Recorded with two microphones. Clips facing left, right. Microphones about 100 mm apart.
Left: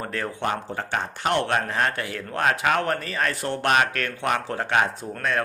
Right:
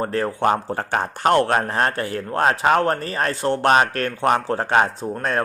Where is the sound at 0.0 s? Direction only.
35° right (ahead or behind).